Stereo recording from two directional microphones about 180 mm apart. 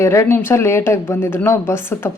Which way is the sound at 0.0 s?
15° left (ahead or behind).